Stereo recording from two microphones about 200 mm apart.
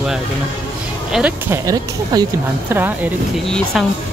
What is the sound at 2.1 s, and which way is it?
A woman's voice, 20° right (ahead or behind).